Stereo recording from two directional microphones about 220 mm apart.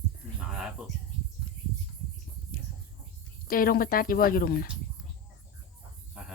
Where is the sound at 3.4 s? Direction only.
40° left (ahead or behind).